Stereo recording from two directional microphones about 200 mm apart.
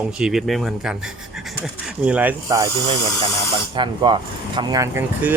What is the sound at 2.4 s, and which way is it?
Speech, 20° right (ahead or behind).